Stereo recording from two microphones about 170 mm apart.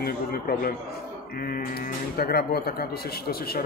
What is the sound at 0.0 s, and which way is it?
Speech, 60° left (ahead or behind).